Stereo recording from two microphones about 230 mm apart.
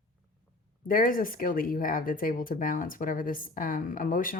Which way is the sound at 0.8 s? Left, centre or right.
Left.